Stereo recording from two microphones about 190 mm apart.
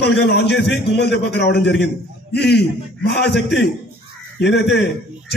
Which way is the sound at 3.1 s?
60° left (ahead or behind).